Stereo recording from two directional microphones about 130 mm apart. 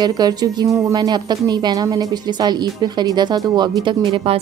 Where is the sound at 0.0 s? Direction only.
30° right (ahead or behind).